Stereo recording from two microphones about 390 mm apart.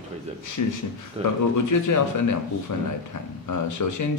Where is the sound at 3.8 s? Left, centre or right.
Left.